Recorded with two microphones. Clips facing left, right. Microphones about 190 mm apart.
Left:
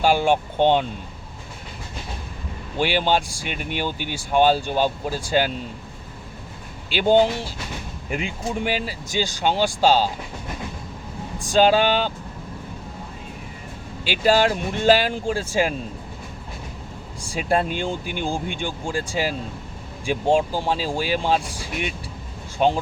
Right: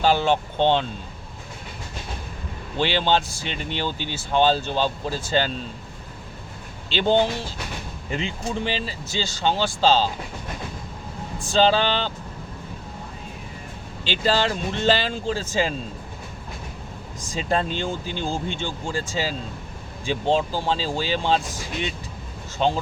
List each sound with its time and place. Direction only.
0.0 s speech: 10° left (ahead or behind)
2.7 s speech: 10° left (ahead or behind)
6.9 s speech: 10° left (ahead or behind)
11.3 s speech: 10° left (ahead or behind)
14.0 s speech: 10° left (ahead or behind)
17.3 s speech: 10° left (ahead or behind)